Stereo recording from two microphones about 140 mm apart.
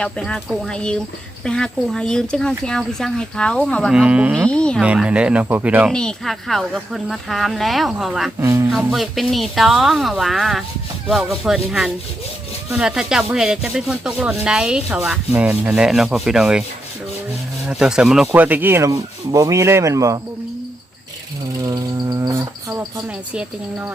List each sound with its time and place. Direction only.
0.0 s speech: 5° left (ahead or behind)
3.9 s speech: 10° right (ahead or behind)
4.4 s speech: 5° left (ahead or behind)
4.8 s speech: 10° right (ahead or behind)
5.9 s speech: 5° left (ahead or behind)
8.4 s speech: 20° right (ahead or behind)
8.9 s speech: centre (ahead or behind)
17.7 s speech: 5° right (ahead or behind); by 20.1 s 20° right (ahead or behind)
21.6 s cricket: 25° right (ahead or behind)
23.3 s speech: 10° right (ahead or behind)